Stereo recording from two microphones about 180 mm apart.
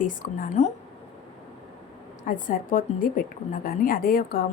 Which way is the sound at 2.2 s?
50° left (ahead or behind).